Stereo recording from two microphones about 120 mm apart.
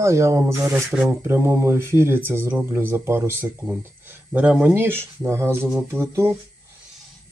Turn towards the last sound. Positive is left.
turn(degrees=-20)  # may be behind; listen again after turning